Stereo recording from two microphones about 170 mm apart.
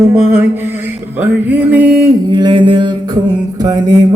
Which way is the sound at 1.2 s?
10° right (ahead or behind).